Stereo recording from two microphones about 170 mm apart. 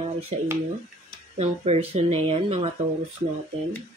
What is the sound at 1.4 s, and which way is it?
Speech, 35° right (ahead or behind).